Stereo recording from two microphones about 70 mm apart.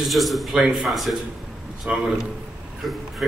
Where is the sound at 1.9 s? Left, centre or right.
Centre.